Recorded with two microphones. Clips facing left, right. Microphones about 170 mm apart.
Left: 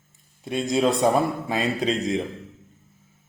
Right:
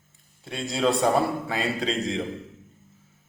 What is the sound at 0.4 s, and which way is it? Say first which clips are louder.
A man's voice: left 3 dB; 15° left (ahead or behind).